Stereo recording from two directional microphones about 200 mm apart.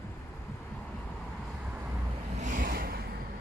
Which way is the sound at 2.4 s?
40° right (ahead or behind).